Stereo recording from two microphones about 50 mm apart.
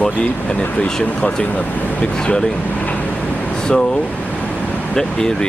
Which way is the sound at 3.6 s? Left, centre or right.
Centre.